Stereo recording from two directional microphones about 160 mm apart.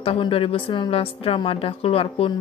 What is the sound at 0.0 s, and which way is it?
A woman's voice, 35° left (ahead or behind).